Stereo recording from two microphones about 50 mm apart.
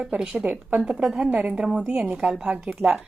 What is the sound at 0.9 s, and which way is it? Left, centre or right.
Speech, centre.